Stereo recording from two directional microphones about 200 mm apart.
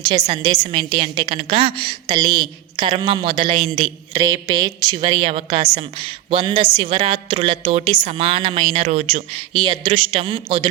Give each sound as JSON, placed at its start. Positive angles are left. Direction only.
{"t": 0.0, "sound": "a woman's voice", "side_deg": -25}